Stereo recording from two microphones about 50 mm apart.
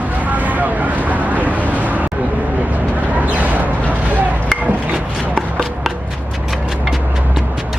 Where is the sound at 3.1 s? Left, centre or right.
Right.